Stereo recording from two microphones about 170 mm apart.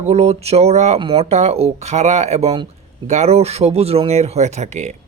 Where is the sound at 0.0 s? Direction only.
40° right (ahead or behind).